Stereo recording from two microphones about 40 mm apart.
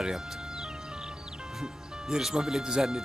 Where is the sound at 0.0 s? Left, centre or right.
Centre.